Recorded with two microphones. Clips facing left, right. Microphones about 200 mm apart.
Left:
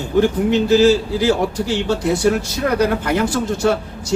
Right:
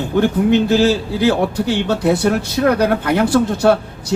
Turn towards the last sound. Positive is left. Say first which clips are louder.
# right 3 dB
turn(degrees=-60)  # may be behind; listen again after turning